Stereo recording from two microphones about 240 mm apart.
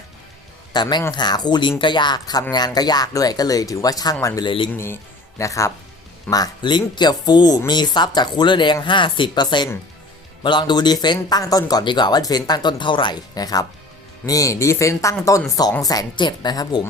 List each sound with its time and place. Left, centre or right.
0.7 s speech: centre